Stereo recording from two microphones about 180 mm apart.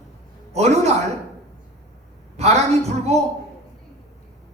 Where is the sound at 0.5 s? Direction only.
35° right (ahead or behind).